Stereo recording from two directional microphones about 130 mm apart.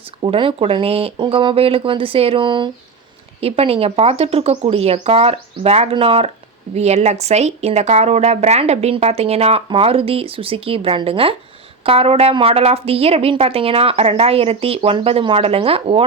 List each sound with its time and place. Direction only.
0.2 s a woman's voice: 45° right (ahead or behind)
3.4 s a woman's voice: 50° right (ahead or behind)